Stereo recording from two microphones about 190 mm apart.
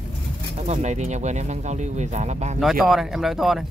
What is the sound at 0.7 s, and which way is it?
Speech, 35° right (ahead or behind).